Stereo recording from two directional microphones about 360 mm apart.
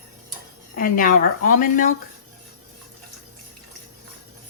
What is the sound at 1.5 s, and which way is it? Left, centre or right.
Speech, left.